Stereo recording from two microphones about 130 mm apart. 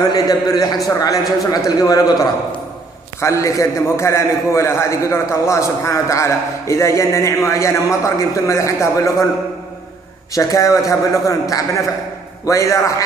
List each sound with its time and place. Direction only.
0.1 s a man's voice: 30° left (ahead or behind)
3.2 s a man's voice: 20° left (ahead or behind)
10.3 s a man's voice: 25° left (ahead or behind)